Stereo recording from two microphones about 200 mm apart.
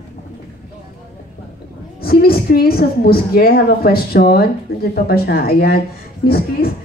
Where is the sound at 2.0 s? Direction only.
50° left (ahead or behind).